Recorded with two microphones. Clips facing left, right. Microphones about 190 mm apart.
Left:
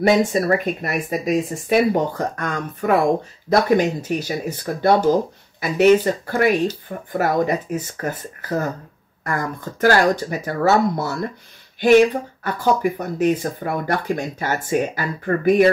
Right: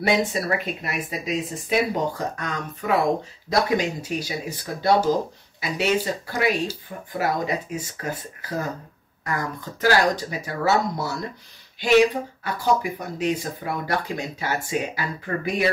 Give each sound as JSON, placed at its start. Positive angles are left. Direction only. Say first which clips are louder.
{"t": 0.0, "sound": "speech", "louder": "left 6 dB", "side_deg": 45}